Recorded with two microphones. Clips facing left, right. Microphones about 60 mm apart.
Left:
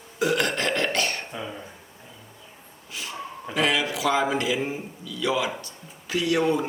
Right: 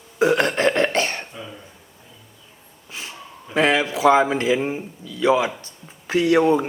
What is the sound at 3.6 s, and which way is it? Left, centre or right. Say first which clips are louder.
A man's voice: right 5 dB; right.